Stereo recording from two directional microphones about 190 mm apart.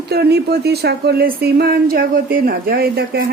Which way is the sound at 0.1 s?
60° right (ahead or behind).